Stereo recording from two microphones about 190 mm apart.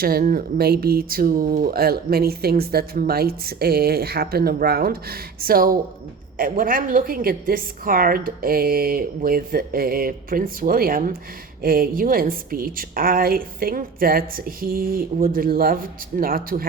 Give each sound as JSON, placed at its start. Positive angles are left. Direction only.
{"t": 0.0, "sound": "speech", "side_deg": -50}